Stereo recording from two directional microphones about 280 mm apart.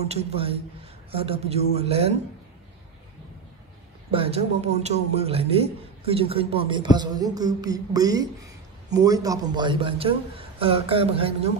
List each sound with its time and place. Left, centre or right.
0.0 s a man's voice: right
4.1 s a man's voice: right